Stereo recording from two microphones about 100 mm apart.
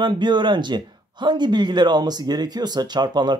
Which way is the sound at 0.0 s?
50° right (ahead or behind).